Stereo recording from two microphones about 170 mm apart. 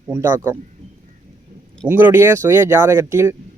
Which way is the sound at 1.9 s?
15° right (ahead or behind).